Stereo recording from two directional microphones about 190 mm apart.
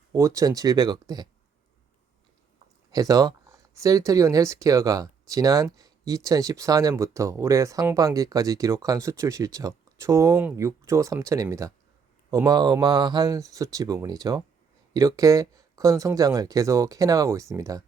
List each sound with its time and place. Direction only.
0.1 s speech: 15° right (ahead or behind)
2.9 s speech: 20° right (ahead or behind)